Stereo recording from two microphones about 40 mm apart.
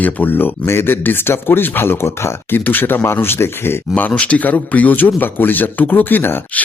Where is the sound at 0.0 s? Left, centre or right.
Left.